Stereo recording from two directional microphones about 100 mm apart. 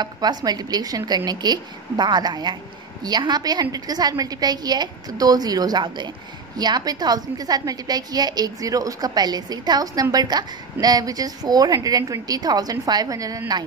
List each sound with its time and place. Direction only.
0.0 s a woman's voice: 45° right (ahead or behind)